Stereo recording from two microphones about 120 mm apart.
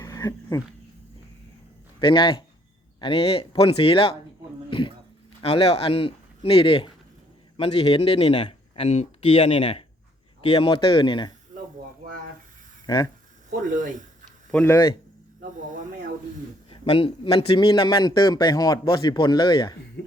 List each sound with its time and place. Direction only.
0.0 s dog: 30° left (ahead or behind)
2.0 s speech: 45° left (ahead or behind)
12.8 s a sound: 35° left (ahead or behind)
13.5 s speech: 90° right
14.5 s speech: 15° left (ahead or behind)
16.6 s a man's voice: 45° left (ahead or behind)
17.7 s speech: 40° left (ahead or behind)